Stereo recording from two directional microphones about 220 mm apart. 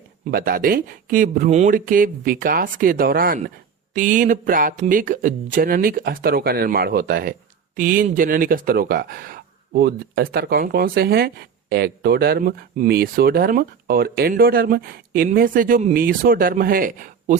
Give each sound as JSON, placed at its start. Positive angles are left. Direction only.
{"t": 0.3, "sound": "speech", "side_deg": -40}